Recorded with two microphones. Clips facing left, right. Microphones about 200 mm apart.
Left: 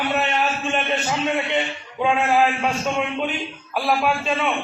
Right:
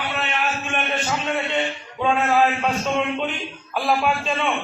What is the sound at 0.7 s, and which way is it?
A man's voice, 20° left (ahead or behind).